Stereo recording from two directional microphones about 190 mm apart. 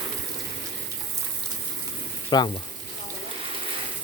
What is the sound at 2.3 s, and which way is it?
Speech, 25° left (ahead or behind).